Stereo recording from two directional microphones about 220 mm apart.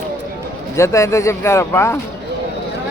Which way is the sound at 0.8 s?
15° left (ahead or behind).